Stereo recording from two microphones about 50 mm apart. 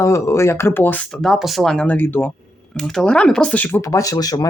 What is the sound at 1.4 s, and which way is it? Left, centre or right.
Speech, centre.